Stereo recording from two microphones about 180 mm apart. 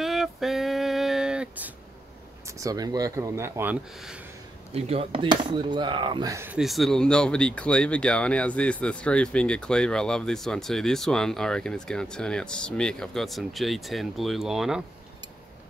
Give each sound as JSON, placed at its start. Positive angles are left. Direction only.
{"t": 0.0, "sound": "music", "side_deg": 0}
{"t": 2.4, "sound": "speech", "side_deg": -20}
{"t": 4.7, "sound": "speech", "side_deg": -35}
{"t": 6.6, "sound": "speech", "side_deg": 0}